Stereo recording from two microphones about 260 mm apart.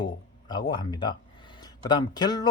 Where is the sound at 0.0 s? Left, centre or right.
Centre.